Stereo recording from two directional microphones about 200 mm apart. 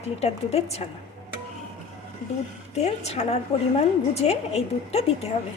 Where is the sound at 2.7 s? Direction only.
35° left (ahead or behind).